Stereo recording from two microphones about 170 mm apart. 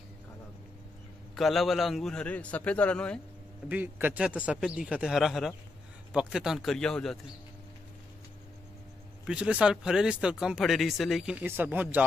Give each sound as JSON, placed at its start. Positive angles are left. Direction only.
{"t": 1.3, "sound": "speech", "side_deg": 0}
{"t": 3.6, "sound": "a man's voice", "side_deg": -10}
{"t": 9.2, "sound": "speech", "side_deg": -5}
{"t": 11.4, "sound": "a man's voice", "side_deg": -10}